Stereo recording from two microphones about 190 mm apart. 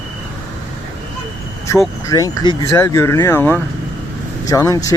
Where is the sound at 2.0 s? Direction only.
15° left (ahead or behind).